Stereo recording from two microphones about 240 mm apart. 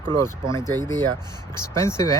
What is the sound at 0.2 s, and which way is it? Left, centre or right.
Speech, centre.